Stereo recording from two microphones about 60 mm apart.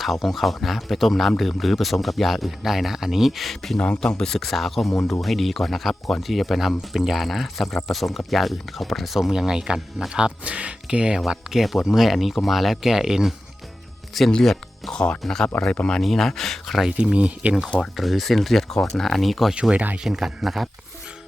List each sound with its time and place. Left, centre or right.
0.0 s speech: centre
3.8 s speech: centre
4.2 s speech: centre
11.3 s speech: centre
14.3 s speech: centre
15.7 s speech: left
16.0 s speech: centre
17.0 s speech: centre
17.9 s speech: centre
19.7 s speech: right
20.1 s speech: centre